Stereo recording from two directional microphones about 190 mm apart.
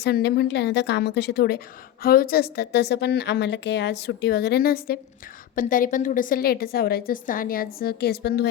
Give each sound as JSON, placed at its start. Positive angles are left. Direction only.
{"t": 0.0, "sound": "a woman's voice", "side_deg": 60}